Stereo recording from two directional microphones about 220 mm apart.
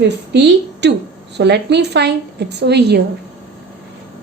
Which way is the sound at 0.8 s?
50° right (ahead or behind).